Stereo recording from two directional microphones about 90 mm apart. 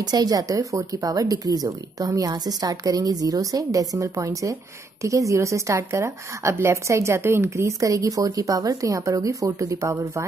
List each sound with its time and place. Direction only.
0.0 s a woman's voice: 45° right (ahead or behind)